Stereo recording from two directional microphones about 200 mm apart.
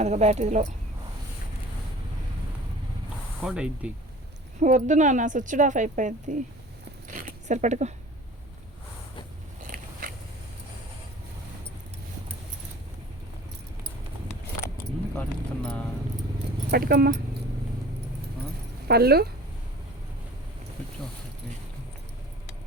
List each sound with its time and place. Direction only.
0.0 s speech: 35° right (ahead or behind)
3.4 s speech: 5° right (ahead or behind)
4.6 s speech: 40° right (ahead or behind)
7.1 s zipper: 40° right (ahead or behind)
9.6 s biting: 40° right (ahead or behind)
15.1 s a sound: 5° left (ahead or behind)
16.7 s speech: 50° right (ahead or behind)
18.9 s speech: 50° right (ahead or behind)